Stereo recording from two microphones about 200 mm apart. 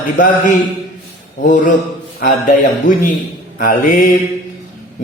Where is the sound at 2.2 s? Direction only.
40° left (ahead or behind).